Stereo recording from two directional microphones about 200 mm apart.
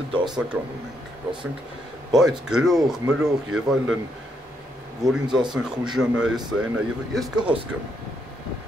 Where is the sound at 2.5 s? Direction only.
Centre (ahead or behind).